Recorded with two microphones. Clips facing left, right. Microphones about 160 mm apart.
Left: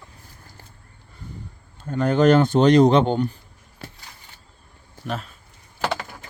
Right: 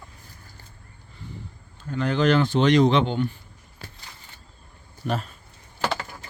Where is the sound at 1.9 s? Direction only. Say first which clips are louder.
Left 5 dB; 45° left (ahead or behind).